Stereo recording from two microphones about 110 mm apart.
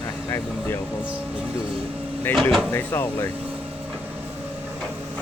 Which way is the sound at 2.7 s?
20° left (ahead or behind).